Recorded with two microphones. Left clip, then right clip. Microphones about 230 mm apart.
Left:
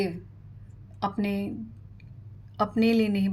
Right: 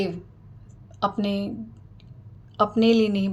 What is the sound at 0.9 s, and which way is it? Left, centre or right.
Speech, left.